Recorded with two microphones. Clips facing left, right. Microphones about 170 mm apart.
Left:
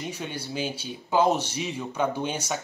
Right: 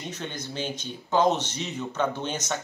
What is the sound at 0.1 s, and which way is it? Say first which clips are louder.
Speech: left 2 dB; 10° left (ahead or behind).